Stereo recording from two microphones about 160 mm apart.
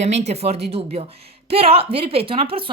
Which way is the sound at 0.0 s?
45° right (ahead or behind).